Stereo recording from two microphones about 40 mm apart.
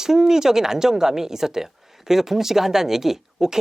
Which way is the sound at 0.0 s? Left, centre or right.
Centre.